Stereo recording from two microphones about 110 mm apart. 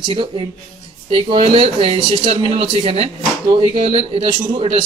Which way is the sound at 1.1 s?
60° right (ahead or behind).